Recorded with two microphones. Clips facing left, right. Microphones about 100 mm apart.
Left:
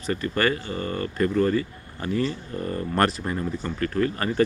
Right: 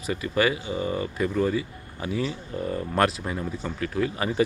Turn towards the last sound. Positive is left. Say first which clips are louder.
# left 2 dB
turn(degrees=-10)  # may be behind; listen again after turning